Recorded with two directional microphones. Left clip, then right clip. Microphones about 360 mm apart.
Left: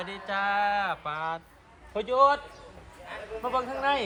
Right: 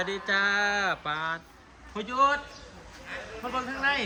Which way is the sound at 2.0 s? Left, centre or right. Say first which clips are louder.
Left 2 dB; centre.